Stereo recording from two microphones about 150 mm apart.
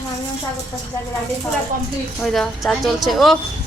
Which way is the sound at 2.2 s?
5° left (ahead or behind).